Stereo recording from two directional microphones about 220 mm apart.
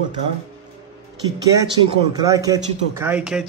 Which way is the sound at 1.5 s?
20° right (ahead or behind).